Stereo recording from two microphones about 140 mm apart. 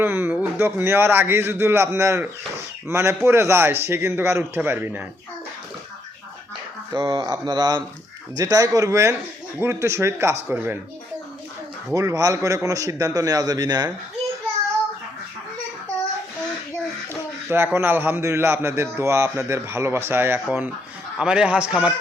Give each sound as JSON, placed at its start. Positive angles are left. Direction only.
{"t": 0.0, "sound": "a man's voice", "side_deg": -15}
{"t": 6.9, "sound": "a man's voice", "side_deg": -30}
{"t": 11.9, "sound": "a man's voice", "side_deg": -25}
{"t": 17.5, "sound": "a man's voice", "side_deg": -15}